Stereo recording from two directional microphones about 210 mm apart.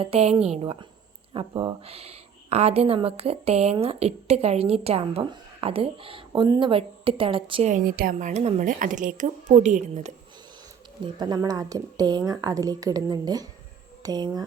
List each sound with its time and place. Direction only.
0.0 s speech: 30° right (ahead or behind)
7.7 s a woman's voice: 40° right (ahead or behind)
11.0 s a woman's voice: 20° right (ahead or behind)